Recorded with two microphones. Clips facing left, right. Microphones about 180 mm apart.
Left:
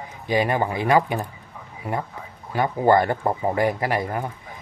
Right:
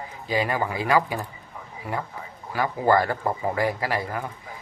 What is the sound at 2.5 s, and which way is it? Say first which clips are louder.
Speech: left 3 dB; 25° left (ahead or behind).